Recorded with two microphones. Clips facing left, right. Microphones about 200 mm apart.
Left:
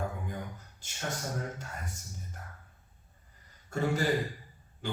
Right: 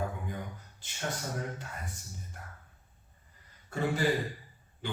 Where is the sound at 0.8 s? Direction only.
45° left (ahead or behind).